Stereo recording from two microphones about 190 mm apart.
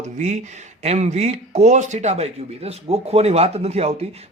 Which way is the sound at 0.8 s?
35° right (ahead or behind).